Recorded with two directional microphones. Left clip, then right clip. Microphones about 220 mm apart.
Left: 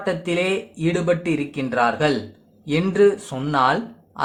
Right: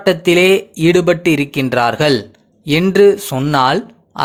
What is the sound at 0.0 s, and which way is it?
Speech, 40° right (ahead or behind).